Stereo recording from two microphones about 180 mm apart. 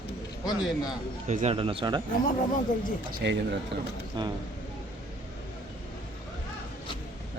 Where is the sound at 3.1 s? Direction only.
65° right (ahead or behind).